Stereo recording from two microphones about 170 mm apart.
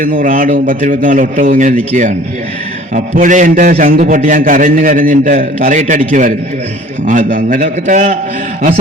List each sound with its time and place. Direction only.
0.0 s a man's voice: 55° right (ahead or behind)